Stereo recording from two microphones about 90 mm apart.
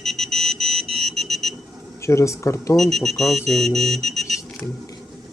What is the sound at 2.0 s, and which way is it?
Speech, 35° left (ahead or behind).